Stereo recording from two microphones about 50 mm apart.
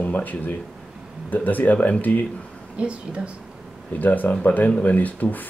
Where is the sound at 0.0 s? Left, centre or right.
Left.